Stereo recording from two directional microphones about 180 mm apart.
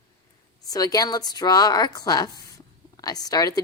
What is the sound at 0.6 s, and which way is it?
A woman's voice, 20° left (ahead or behind).